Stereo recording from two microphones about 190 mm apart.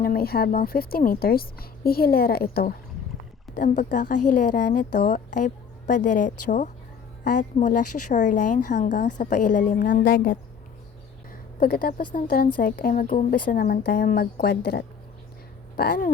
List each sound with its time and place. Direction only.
0.0 s a woman's voice: 50° left (ahead or behind)
11.6 s a woman's voice: 50° left (ahead or behind)